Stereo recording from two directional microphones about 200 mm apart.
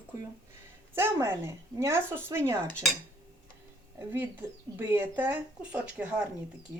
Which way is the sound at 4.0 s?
10° right (ahead or behind).